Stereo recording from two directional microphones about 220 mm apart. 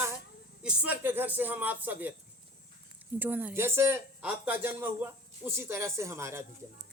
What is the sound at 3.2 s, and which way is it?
Speech, 10° right (ahead or behind).